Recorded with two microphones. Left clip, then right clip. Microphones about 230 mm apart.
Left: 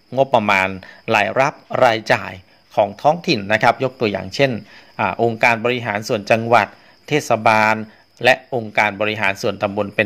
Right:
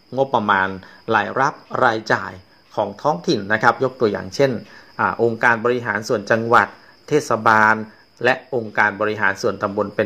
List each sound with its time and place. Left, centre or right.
0.1 s speech: left